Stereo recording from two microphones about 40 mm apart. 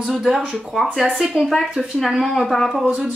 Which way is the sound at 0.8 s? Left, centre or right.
Centre.